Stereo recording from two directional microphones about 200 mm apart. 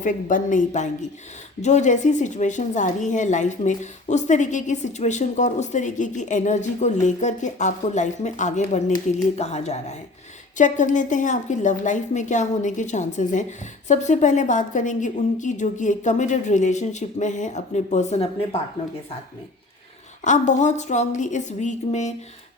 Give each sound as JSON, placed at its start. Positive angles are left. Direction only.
{"t": 0.0, "sound": "a woman's voice", "side_deg": 40}
{"t": 20.2, "sound": "a woman's voice", "side_deg": 35}